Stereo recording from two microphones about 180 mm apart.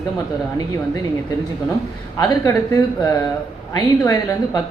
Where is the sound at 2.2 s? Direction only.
20° left (ahead or behind).